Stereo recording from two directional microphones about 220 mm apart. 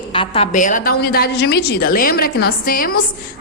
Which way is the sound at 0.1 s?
25° left (ahead or behind).